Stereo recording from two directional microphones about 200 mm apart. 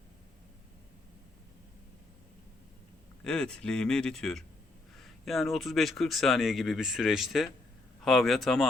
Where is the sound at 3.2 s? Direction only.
5° left (ahead or behind).